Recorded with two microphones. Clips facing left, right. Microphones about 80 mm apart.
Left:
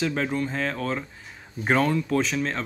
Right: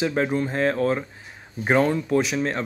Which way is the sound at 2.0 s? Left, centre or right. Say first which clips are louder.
Right 3 dB; centre.